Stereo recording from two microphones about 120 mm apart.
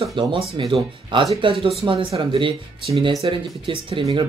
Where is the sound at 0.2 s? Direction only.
40° right (ahead or behind).